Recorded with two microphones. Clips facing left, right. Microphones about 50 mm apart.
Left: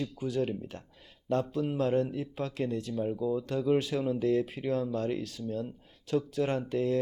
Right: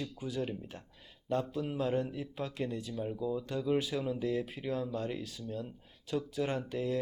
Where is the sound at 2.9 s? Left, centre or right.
Centre.